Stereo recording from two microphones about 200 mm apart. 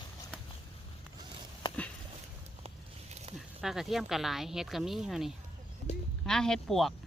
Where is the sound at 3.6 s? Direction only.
Centre (ahead or behind).